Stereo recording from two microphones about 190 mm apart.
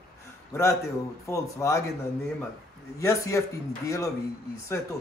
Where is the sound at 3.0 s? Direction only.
15° left (ahead or behind).